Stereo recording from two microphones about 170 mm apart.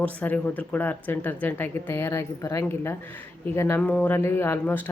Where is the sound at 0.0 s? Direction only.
10° left (ahead or behind).